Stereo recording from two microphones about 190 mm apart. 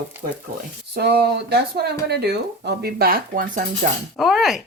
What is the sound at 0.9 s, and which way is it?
Speech, 55° right (ahead or behind).